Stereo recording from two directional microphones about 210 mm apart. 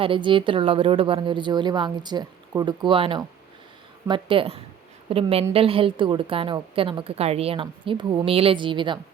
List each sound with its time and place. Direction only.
0.0 s a woman's voice: 25° right (ahead or behind)